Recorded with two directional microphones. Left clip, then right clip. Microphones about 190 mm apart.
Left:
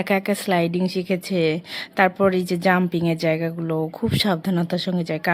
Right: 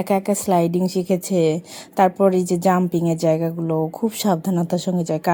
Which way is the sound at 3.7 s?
15° left (ahead or behind).